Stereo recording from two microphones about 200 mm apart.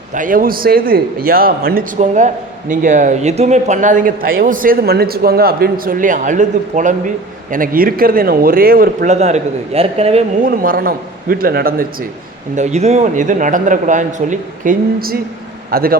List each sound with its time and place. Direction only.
0.1 s a man's voice: 40° right (ahead or behind)
10.4 s a man's voice: 45° right (ahead or behind)
12.5 s a man's voice: 35° right (ahead or behind)